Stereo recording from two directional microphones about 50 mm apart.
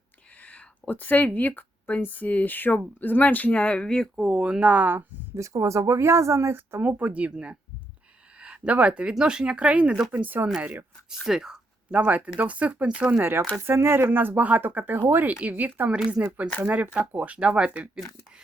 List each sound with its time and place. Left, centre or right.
0.4 s a sound: left
2.0 s speech: left
4.1 s speech: centre
4.6 s speech: right
5.4 s speech: right
6.5 s speech: right
6.8 s speech: right
10.1 s speech: right
11.3 s speech: centre
11.9 s speech: right
13.1 s speech: right
17.3 s speech: right